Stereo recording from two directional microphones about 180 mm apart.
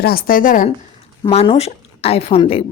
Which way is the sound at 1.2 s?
30° left (ahead or behind).